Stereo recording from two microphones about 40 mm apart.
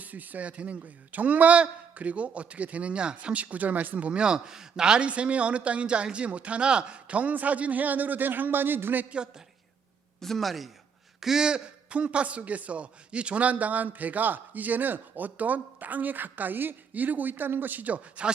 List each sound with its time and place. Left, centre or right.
0.0 s speech: right
3.3 s speech: right; by 5.0 s centre
5.0 s speech: right
10.2 s a man's voice: centre
11.2 s a man's voice: centre; by 18.0 s right